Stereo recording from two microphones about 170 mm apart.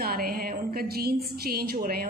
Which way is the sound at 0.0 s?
60° right (ahead or behind).